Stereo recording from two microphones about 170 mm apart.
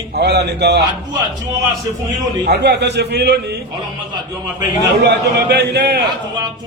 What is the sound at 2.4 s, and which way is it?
A man's voice, 75° right (ahead or behind).